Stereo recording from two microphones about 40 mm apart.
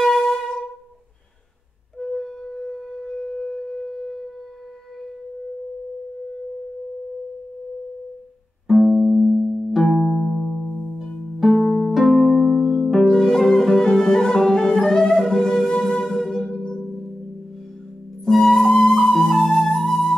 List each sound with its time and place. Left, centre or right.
0.0 s music: centre
2.0 s singing bowl: centre
8.6 s music: centre
11.5 s harp: centre
12.2 s music: centre
13.0 s music: centre
18.2 s flute: centre